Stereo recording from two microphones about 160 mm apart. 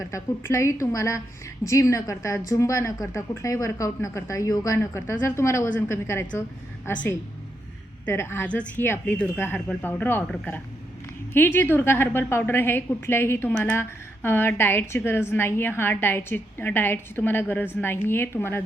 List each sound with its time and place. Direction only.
0.0 s a woman's voice: 20° left (ahead or behind)